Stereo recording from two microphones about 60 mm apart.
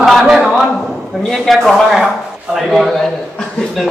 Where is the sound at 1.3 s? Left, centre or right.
Centre.